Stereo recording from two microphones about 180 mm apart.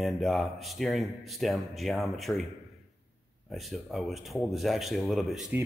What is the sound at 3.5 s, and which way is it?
Speech, centre (ahead or behind).